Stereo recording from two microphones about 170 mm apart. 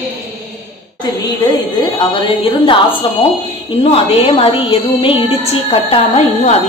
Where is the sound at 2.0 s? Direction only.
30° left (ahead or behind).